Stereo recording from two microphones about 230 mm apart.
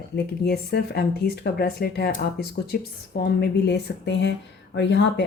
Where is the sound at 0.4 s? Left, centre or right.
Left.